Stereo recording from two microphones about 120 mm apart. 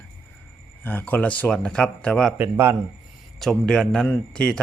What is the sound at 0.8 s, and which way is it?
Speech, 15° left (ahead or behind).